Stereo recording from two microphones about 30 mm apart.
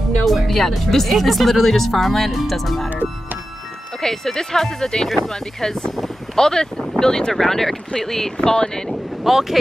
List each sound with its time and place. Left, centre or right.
0.5 s speech: centre
4.0 s speech: centre
8.4 s speech: left
9.2 s speech: centre